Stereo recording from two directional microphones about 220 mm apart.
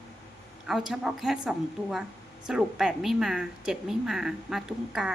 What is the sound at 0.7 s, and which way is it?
A woman's voice, centre (ahead or behind).